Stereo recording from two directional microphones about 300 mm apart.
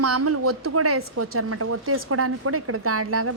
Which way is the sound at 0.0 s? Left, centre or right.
Right.